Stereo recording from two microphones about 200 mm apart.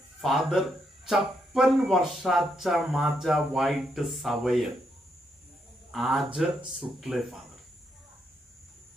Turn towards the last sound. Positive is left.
turn(degrees=0)  # may be behind; listen again after turning